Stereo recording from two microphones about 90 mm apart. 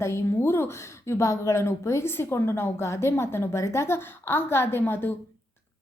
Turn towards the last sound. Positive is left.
turn(degrees=25)  # may be behind; listen again after turning